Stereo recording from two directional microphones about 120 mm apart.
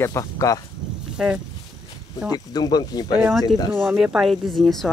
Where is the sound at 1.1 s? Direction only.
5° right (ahead or behind).